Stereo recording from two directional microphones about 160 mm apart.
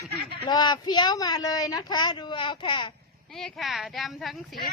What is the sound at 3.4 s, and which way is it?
Speech, centre (ahead or behind).